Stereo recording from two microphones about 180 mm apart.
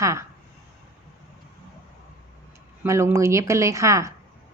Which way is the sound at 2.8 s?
15° right (ahead or behind).